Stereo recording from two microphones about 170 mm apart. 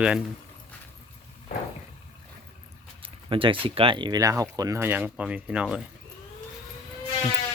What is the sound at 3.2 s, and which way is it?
Speech, 30° right (ahead or behind).